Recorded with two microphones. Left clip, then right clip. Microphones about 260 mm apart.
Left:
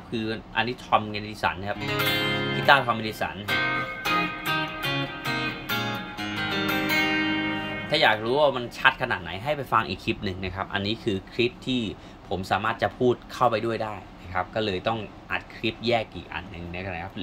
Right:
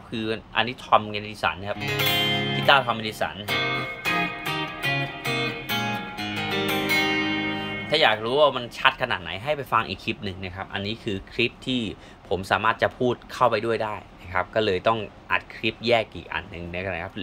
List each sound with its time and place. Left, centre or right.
0.1 s speech: centre
1.8 s speech: right
2.6 s speech: centre
3.4 s music: right
7.9 s speech: centre